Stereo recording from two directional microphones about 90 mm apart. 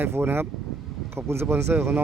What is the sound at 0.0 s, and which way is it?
Speech, 25° right (ahead or behind).